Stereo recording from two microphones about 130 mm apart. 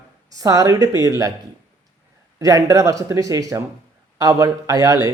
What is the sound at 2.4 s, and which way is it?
Speech, 30° right (ahead or behind).